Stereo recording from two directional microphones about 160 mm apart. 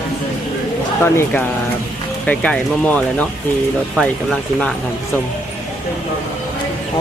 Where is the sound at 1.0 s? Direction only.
15° left (ahead or behind).